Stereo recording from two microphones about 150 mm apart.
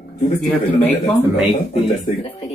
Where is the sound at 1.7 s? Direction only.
45° left (ahead or behind).